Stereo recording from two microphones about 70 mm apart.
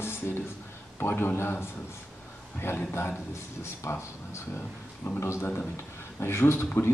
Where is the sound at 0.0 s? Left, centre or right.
Left.